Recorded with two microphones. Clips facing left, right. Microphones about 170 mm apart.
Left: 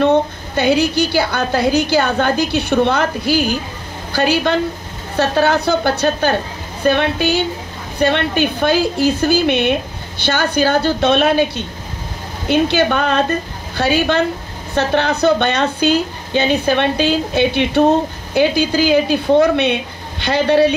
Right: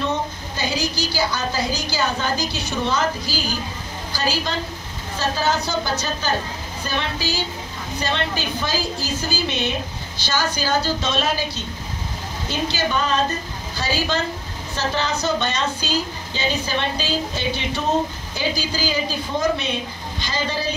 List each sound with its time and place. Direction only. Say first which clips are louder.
0.0 s speech: left 11 dB; 60° left (ahead or behind)